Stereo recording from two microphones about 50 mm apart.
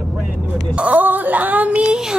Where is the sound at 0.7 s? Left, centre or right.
Right.